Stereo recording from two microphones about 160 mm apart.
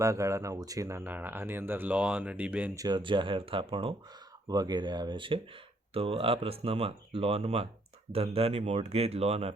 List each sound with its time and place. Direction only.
0.0 s speech: 20° right (ahead or behind)
2.7 s speech: 25° right (ahead or behind)
4.4 s speech: 25° right (ahead or behind)